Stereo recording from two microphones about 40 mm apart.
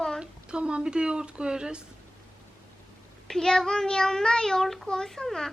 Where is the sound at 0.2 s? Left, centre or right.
Right.